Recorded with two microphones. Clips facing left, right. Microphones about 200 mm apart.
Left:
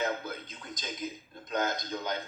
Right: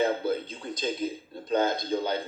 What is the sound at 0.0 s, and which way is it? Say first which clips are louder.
A man's voice: right 8 dB; 30° right (ahead or behind).